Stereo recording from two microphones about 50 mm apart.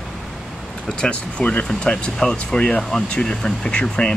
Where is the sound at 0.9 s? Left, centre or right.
Left.